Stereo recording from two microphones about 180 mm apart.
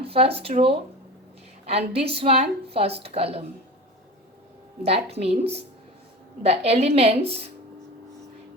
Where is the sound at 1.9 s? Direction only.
30° right (ahead or behind).